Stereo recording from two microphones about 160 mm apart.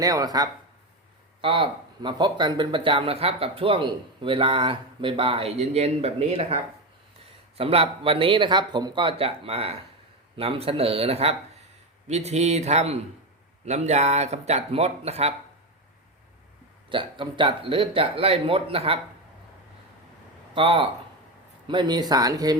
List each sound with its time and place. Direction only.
0.0 s speech: 25° right (ahead or behind)
1.4 s speech: 35° right (ahead or behind)
16.9 s speech: 30° right (ahead or behind)
20.5 s speech: 35° right (ahead or behind)